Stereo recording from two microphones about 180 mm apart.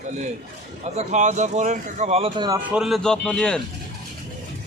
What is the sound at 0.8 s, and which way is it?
Speech, 40° right (ahead or behind).